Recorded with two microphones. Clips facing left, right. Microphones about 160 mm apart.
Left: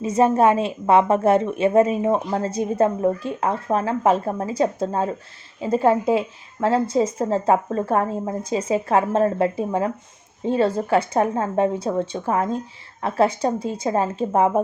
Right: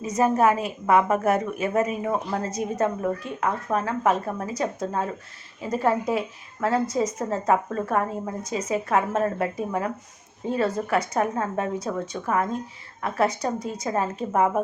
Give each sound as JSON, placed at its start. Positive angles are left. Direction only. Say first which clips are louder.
{"t": 0.0, "sound": "a woman's voice", "louder": "left 4 dB", "side_deg": 30}